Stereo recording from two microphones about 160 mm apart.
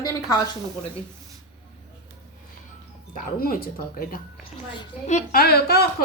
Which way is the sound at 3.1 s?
60° left (ahead or behind).